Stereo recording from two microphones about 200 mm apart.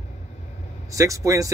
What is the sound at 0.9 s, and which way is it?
Speech, 15° right (ahead or behind).